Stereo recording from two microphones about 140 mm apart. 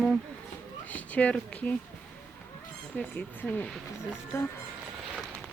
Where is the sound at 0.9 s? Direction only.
10° left (ahead or behind).